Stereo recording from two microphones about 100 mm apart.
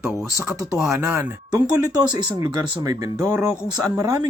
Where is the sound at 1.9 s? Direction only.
40° right (ahead or behind).